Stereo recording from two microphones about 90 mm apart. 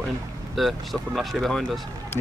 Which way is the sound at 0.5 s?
Centre (ahead or behind).